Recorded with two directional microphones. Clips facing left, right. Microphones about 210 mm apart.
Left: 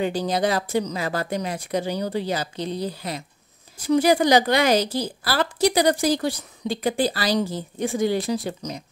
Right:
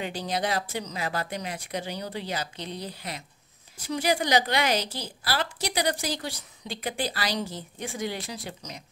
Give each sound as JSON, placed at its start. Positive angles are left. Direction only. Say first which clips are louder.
{"t": 0.0, "sound": "a woman's voice", "louder": "left 7 dB", "side_deg": 40}